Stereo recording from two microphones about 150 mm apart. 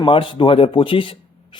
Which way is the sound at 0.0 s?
35° left (ahead or behind).